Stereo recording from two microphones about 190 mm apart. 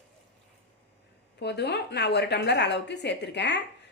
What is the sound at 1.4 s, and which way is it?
A woman's voice, 60° left (ahead or behind).